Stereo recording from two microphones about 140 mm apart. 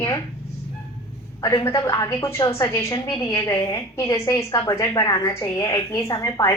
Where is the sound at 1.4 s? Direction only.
20° left (ahead or behind).